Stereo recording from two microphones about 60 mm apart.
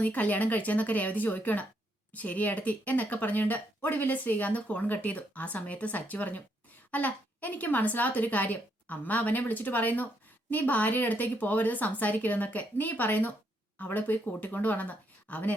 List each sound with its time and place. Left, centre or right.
0.0 s speech: left